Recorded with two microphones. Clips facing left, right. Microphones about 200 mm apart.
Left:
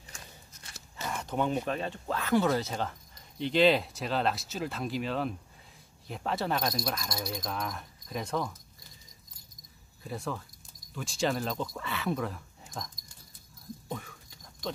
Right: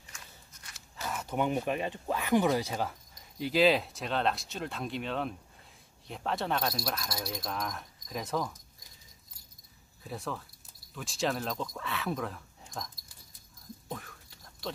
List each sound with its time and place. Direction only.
0.1 s walk: 30° left (ahead or behind)
0.7 s a sound: 30° left (ahead or behind)
1.0 s speech: 5° right (ahead or behind)
10.0 s speech: centre (ahead or behind)
13.8 s whispering: centre (ahead or behind)